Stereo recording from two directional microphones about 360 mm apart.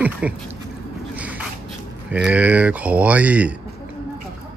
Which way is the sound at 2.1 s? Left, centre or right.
Centre.